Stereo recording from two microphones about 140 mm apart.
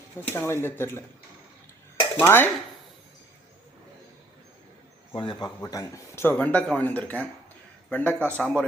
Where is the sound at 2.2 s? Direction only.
15° left (ahead or behind).